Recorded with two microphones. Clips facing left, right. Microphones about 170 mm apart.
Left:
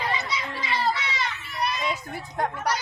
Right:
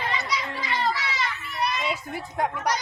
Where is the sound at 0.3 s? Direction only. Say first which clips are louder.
Right 1 dB; 25° left (ahead or behind).